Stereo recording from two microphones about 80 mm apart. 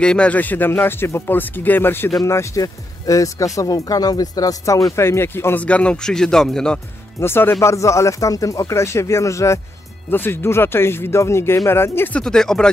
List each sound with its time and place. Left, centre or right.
0.0 s speech: centre; by 2.0 s left
2.2 s speech: left; by 6.8 s centre
7.2 s speech: left
10.1 s speech: left
12.1 s speech: centre